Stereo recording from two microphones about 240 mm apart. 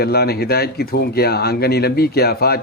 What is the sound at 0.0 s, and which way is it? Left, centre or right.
Speech, left.